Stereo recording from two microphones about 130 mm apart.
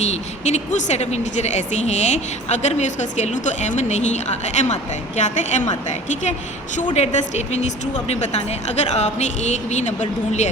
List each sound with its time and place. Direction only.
0.0 s speech: 60° left (ahead or behind)
6.9 s speech: 55° left (ahead or behind)